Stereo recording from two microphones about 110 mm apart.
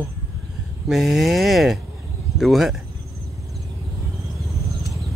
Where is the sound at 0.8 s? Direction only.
5° right (ahead or behind).